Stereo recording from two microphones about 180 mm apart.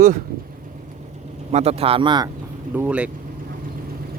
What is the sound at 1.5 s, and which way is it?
Speech, 35° right (ahead or behind).